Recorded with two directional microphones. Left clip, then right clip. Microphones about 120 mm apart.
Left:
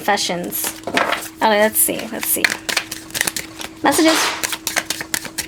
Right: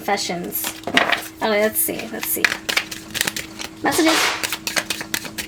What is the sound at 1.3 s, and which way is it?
Dishes, 45° left (ahead or behind).